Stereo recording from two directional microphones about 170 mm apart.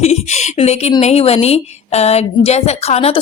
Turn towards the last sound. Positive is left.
turn(degrees=35)  # may be behind; listen again after turning